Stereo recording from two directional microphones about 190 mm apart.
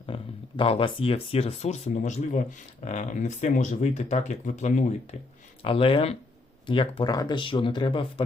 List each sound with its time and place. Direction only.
0.0 s speech: 25° left (ahead or behind)
5.6 s speech: 30° left (ahead or behind)